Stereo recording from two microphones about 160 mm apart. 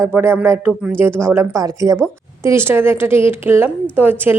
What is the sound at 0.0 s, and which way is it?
A woman's voice, 15° right (ahead or behind).